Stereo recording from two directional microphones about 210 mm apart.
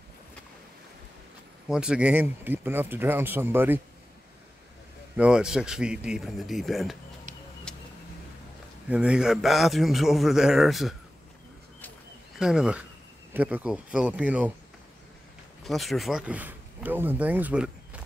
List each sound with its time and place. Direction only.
1.7 s speech: 5° right (ahead or behind)
5.1 s a man's voice: 5° right (ahead or behind)
7.7 s vehicle: 5° left (ahead or behind)
8.8 s a man's voice: 5° right (ahead or behind)
12.4 s a man's voice: 5° right (ahead or behind)
15.6 s speech: centre (ahead or behind)